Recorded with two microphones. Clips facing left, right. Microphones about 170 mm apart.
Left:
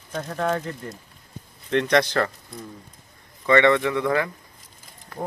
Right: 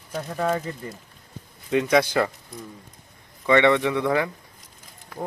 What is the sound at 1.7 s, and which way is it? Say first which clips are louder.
Speech: even; 5° right (ahead or behind).